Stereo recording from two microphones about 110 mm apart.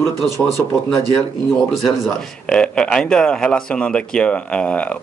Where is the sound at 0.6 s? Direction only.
20° left (ahead or behind).